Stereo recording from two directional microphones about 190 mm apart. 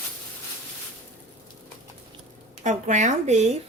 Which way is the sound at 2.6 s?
40° right (ahead or behind).